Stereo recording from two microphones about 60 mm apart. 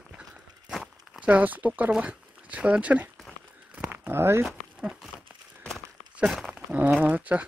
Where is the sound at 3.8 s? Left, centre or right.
Right.